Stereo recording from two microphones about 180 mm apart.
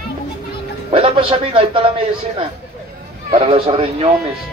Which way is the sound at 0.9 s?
30° right (ahead or behind).